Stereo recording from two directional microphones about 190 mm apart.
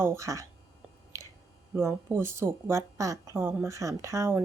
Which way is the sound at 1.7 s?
15° right (ahead or behind).